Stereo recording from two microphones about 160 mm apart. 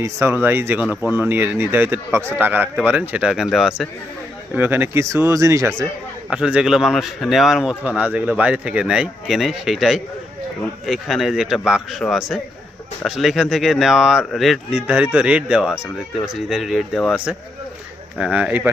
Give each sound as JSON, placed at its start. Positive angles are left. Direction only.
{"t": 0.0, "sound": "speech", "side_deg": -15}
{"t": 6.3, "sound": "speech", "side_deg": -5}